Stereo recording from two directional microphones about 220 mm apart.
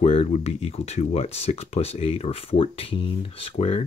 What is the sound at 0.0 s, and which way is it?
Speech, 30° left (ahead or behind).